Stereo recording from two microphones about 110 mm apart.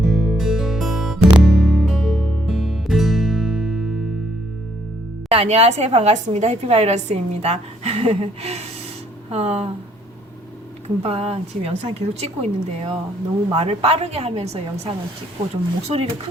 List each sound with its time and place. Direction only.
0.0 s music: 5° right (ahead or behind)
5.3 s a woman's voice: 65° right (ahead or behind)
10.8 s a woman's voice: 70° right (ahead or behind)